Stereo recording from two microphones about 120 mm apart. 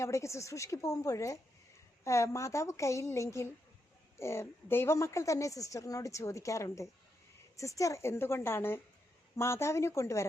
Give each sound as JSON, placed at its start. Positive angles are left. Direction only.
{"t": 0.0, "sound": "a woman's voice", "side_deg": 25}